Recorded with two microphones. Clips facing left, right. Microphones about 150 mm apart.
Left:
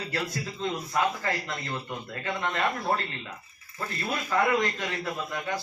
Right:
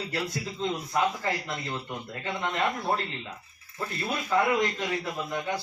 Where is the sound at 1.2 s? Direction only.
15° right (ahead or behind).